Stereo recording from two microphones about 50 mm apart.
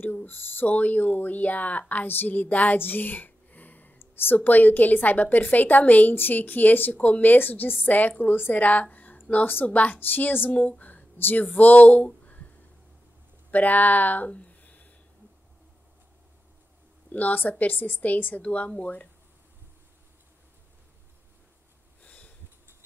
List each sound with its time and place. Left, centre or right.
0.0 s speech: left
8.9 s a sound: left
9.7 s a woman's voice: left
9.9 s a woman's voice: left
10.8 s a sound: left
11.5 s speech: left
13.5 s speech: left
17.1 s speech: left
22.0 s a sound: left